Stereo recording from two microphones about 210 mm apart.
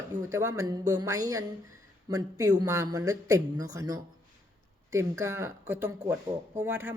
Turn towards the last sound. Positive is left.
turn(degrees=-10)  # may be behind; listen again after turning